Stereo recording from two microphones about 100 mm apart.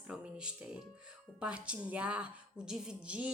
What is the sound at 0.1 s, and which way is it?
A woman's voice, 10° right (ahead or behind).